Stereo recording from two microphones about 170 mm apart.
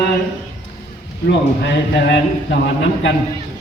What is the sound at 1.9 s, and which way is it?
Speech, 90° left.